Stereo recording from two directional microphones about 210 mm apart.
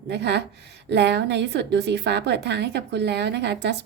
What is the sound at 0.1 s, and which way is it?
A woman's voice, 55° right (ahead or behind).